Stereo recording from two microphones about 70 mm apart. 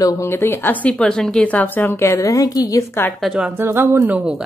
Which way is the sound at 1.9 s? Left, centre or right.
Left.